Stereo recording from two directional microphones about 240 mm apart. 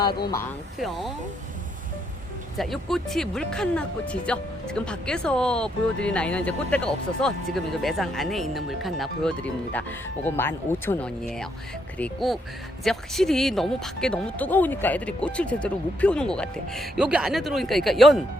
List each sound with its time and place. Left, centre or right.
0.0 s speech: centre
0.8 s speech: centre
2.6 s speech: centre